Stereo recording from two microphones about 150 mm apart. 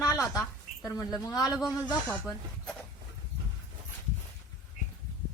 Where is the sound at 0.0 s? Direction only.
25° left (ahead or behind).